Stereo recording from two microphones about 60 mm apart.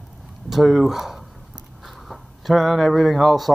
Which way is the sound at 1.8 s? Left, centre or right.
Centre.